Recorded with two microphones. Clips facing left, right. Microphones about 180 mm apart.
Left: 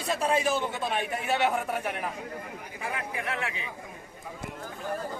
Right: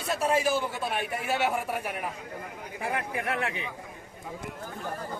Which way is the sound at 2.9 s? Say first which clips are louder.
Right 3 dB; 55° right (ahead or behind).